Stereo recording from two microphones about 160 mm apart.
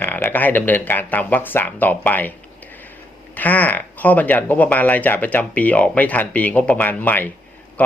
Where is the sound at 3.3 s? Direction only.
10° left (ahead or behind).